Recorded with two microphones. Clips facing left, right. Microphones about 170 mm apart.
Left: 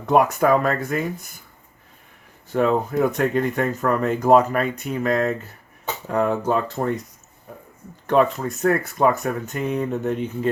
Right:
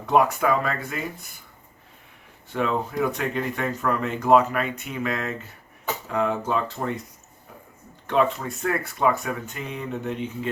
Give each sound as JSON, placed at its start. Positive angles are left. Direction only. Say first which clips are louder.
{"t": 0.1, "sound": "speech", "louder": "left 4 dB", "side_deg": 45}
{"t": 2.5, "sound": "speech", "louder": "left 6 dB", "side_deg": 40}
{"t": 8.0, "sound": "speech", "louder": "left 4 dB", "side_deg": 45}